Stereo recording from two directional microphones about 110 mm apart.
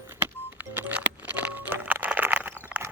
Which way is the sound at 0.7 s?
15° right (ahead or behind).